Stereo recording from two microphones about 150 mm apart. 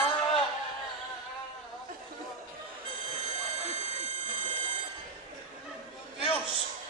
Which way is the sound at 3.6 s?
50° right (ahead or behind).